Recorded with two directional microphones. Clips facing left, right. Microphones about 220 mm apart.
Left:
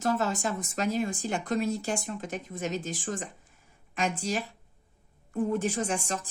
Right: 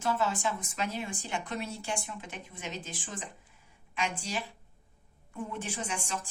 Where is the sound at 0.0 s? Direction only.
40° left (ahead or behind).